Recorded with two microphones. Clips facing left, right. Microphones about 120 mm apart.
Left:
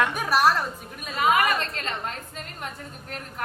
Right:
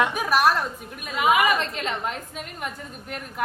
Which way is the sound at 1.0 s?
10° right (ahead or behind).